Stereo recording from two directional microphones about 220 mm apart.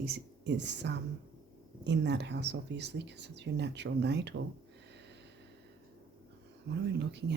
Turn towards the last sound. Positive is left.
turn(degrees=-50)  # may be behind; listen again after turning